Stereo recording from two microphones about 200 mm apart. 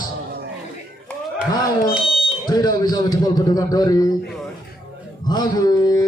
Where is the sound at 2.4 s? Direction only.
20° left (ahead or behind).